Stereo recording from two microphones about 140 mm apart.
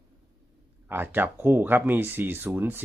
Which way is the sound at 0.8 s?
15° right (ahead or behind).